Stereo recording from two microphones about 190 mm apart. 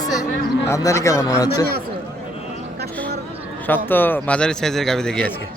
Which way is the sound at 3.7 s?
10° left (ahead or behind).